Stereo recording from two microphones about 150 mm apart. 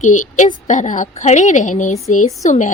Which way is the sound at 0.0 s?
55° left (ahead or behind).